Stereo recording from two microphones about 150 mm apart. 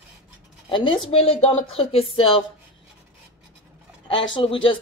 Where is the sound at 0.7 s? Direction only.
35° left (ahead or behind).